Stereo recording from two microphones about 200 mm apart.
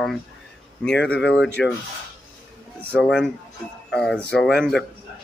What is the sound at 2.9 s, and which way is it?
Speech, centre (ahead or behind).